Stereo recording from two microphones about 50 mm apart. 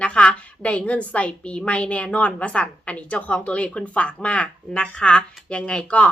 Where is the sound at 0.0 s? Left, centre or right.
Left.